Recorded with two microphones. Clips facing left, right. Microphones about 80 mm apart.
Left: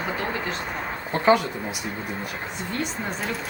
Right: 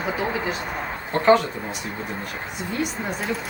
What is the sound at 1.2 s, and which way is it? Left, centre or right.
Speech, centre.